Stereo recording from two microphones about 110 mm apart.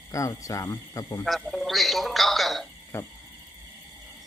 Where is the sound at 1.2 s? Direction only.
Centre (ahead or behind).